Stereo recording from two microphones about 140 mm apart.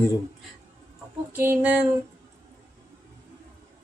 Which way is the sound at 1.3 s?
15° right (ahead or behind).